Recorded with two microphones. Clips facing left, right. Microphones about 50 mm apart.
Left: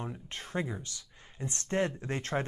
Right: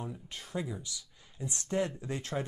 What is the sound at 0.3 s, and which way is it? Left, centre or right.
Speech, left.